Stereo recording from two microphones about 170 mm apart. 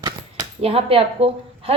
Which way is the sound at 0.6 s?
35° right (ahead or behind).